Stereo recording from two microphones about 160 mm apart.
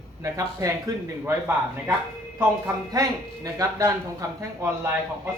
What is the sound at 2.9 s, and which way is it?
Speech, 20° right (ahead or behind).